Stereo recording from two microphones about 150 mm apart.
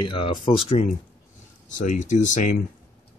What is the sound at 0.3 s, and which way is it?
Speech, 35° left (ahead or behind).